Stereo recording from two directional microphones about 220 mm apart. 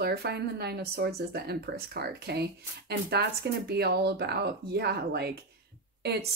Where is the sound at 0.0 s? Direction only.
45° right (ahead or behind).